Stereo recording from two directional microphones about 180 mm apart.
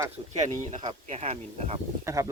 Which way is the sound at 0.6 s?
40° right (ahead or behind).